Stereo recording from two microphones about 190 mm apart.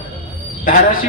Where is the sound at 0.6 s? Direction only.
45° left (ahead or behind).